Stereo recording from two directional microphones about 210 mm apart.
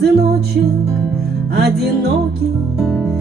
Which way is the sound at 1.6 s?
50° right (ahead or behind).